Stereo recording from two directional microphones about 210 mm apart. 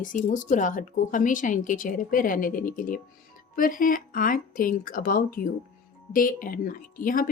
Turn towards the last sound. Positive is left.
turn(degrees=40)  # may be behind; listen again after turning